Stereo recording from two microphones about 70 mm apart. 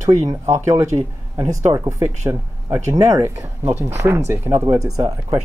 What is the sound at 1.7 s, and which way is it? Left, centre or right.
Speech, right.